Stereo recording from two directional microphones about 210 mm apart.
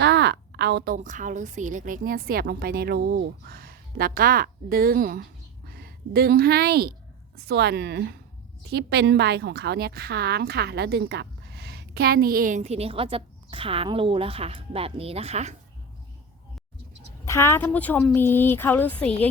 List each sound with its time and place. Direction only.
0.0 s a sound: 55° right (ahead or behind)
0.9 s a woman's voice: 35° right (ahead or behind)
17.2 s a woman's voice: 15° left (ahead or behind)